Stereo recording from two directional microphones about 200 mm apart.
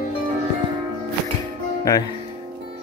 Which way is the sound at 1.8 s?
15° left (ahead or behind).